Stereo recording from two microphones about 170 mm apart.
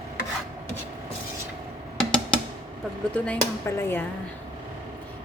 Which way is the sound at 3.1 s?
10° left (ahead or behind).